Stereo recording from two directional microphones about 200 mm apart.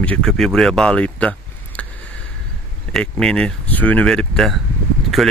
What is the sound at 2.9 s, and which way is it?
Speech, 5° left (ahead or behind).